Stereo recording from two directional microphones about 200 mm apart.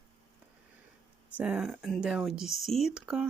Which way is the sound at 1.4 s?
5° right (ahead or behind).